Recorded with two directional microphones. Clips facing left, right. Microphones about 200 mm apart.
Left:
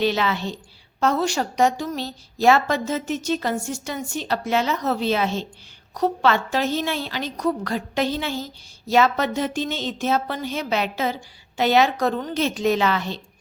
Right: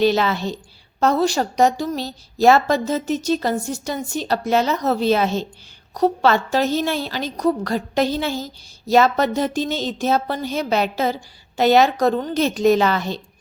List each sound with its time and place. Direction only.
0.0 s a woman's voice: 40° right (ahead or behind)